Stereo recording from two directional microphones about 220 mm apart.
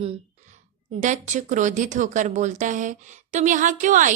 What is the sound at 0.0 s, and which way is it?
A woman's voice, 30° right (ahead or behind).